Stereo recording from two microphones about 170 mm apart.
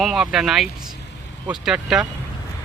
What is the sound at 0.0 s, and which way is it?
Speech, centre (ahead or behind).